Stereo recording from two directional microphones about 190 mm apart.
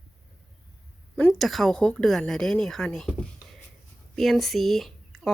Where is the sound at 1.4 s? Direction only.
Centre (ahead or behind).